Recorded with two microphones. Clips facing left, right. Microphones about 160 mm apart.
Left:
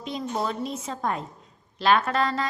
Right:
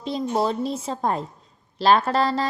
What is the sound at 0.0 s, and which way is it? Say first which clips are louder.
A woman's voice: right 5 dB; 35° right (ahead or behind).